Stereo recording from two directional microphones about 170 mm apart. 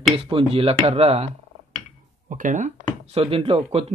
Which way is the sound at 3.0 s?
35° right (ahead or behind).